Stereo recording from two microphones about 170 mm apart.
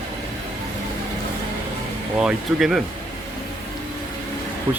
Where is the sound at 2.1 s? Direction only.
5° right (ahead or behind).